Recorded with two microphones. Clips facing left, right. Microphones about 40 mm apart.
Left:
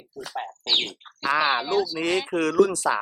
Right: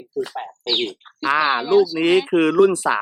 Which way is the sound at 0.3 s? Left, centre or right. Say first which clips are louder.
Left 2 dB; centre.